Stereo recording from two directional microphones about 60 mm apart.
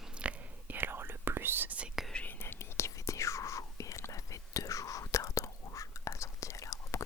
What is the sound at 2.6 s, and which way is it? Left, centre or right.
Whispering, left.